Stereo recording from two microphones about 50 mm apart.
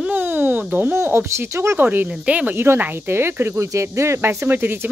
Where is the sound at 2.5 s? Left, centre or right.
Right.